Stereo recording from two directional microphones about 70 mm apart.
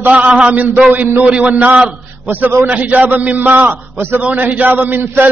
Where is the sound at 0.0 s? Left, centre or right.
Right.